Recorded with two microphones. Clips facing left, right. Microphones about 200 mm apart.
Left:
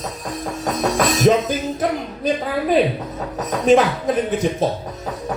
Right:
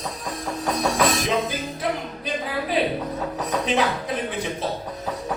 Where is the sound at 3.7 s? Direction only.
45° left (ahead or behind).